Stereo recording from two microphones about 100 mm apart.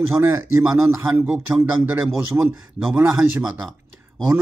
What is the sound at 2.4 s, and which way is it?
Speech, 20° right (ahead or behind).